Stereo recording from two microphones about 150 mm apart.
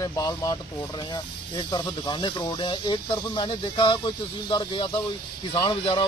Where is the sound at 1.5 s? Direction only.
30° left (ahead or behind).